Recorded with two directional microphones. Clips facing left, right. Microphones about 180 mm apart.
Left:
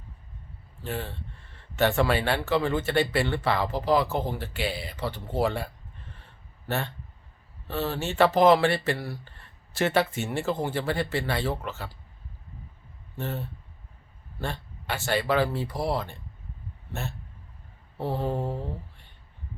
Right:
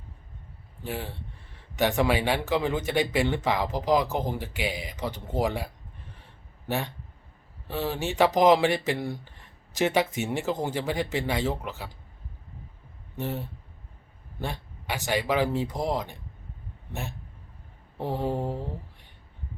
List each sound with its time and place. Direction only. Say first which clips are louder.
0.8 s speech: left 1 dB; 10° right (ahead or behind)
13.1 s speech: right 1 dB; 15° right (ahead or behind)
17.9 s a sound: even; 15° right (ahead or behind)